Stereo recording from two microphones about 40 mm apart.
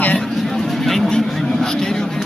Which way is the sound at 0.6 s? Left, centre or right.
Centre.